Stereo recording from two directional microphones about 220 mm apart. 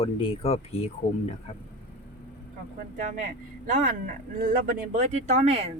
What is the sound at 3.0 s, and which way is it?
Speech, 35° right (ahead or behind).